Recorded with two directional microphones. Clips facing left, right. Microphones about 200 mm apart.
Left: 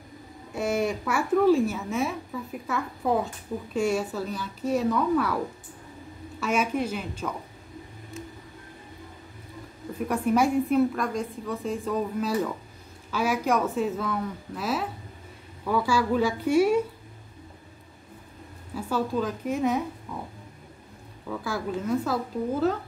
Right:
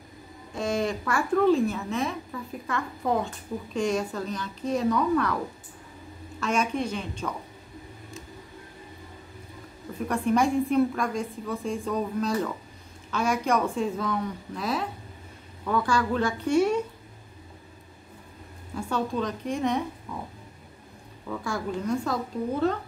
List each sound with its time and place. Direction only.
0.6 s a woman's voice: 10° left (ahead or behind)
6.4 s a woman's voice: 5° left (ahead or behind)
9.9 s a woman's voice: 5° left (ahead or behind)
18.8 s a woman's voice: 5° left (ahead or behind)
21.3 s a woman's voice: 5° left (ahead or behind)